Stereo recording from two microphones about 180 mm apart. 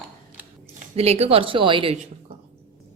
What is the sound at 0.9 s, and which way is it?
Speech, 35° right (ahead or behind).